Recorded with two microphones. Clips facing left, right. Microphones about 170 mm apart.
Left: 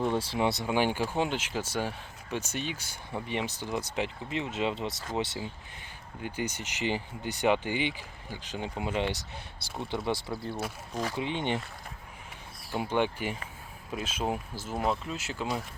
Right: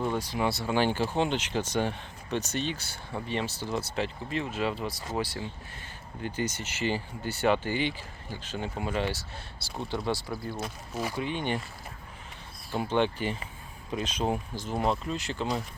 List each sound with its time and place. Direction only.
0.2 s speech: 25° left (ahead or behind)
10.1 s speech: 25° left (ahead or behind)
10.9 s speech: 10° right (ahead or behind)
11.2 s speech: 20° left (ahead or behind)
12.7 s speech: 10° left (ahead or behind)